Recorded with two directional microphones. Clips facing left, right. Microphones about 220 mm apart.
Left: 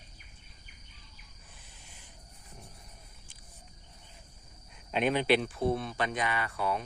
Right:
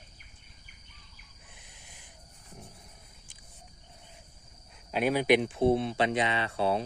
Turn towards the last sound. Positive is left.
turn(degrees=-30)  # may be behind; listen again after turning